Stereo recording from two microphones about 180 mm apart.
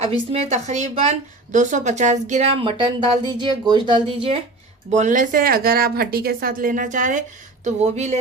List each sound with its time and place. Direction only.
0.3 s speech: 35° right (ahead or behind)